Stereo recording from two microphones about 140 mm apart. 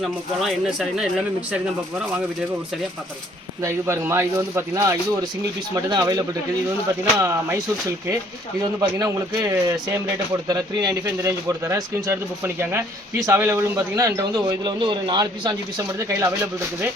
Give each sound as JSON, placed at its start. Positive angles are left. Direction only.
{"t": 0.0, "sound": "speech", "side_deg": 0}
{"t": 3.6, "sound": "speech", "side_deg": -20}